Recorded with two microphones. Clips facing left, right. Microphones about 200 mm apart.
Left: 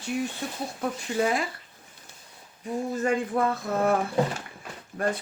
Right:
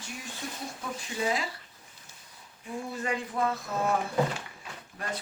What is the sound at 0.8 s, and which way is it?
Speech, 60° left (ahead or behind).